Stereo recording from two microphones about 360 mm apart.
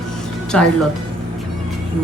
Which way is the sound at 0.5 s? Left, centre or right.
Centre.